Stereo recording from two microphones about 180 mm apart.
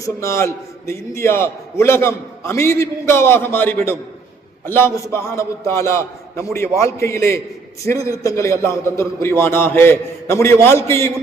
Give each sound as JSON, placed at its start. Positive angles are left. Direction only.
{"t": 0.0, "sound": "a man's voice", "side_deg": 15}